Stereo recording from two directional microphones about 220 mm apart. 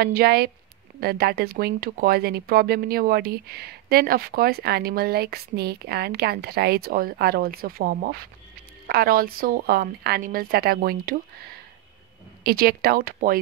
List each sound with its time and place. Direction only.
0.0 s speech: 45° right (ahead or behind)
12.4 s speech: 45° right (ahead or behind)